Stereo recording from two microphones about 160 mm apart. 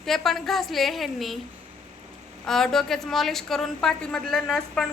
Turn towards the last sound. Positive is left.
turn(degrees=0)  # may be behind; listen again after turning